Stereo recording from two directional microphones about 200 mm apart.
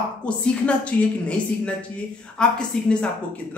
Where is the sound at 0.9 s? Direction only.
10° left (ahead or behind).